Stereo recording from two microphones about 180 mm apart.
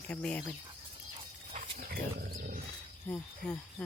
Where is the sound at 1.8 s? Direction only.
55° right (ahead or behind).